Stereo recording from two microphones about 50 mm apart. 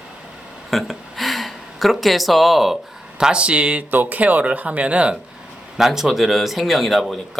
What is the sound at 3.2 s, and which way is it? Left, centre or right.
Speech, right.